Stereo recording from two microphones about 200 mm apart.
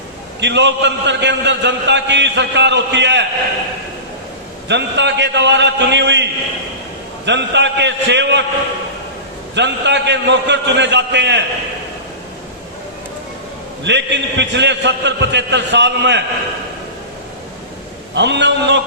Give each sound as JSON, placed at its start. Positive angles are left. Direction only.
{"t": 0.3, "sound": "a man's voice", "side_deg": -60}
{"t": 4.7, "sound": "a man's voice", "side_deg": -60}
{"t": 7.3, "sound": "a man's voice", "side_deg": -60}
{"t": 9.6, "sound": "a man's voice", "side_deg": -60}
{"t": 13.8, "sound": "a man's voice", "side_deg": -60}
{"t": 18.1, "sound": "a man's voice", "side_deg": -60}